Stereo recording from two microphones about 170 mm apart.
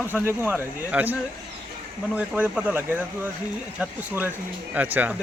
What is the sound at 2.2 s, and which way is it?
A man's voice, 10° right (ahead or behind).